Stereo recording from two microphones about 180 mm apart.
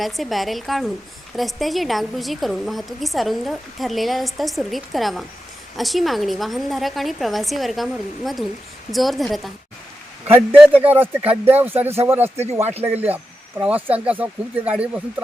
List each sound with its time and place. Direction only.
0.0 s a woman's voice: centre (ahead or behind)
10.8 s speech: 10° right (ahead or behind)
12.6 s speech: 35° right (ahead or behind)
13.6 s speech: 10° right (ahead or behind)